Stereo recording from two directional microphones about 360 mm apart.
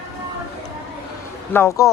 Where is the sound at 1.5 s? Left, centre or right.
Centre.